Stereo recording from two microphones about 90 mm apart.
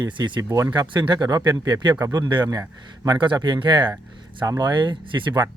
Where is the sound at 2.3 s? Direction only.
50° right (ahead or behind).